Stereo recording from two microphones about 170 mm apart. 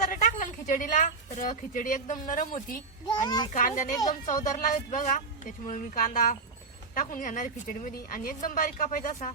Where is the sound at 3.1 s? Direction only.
25° left (ahead or behind).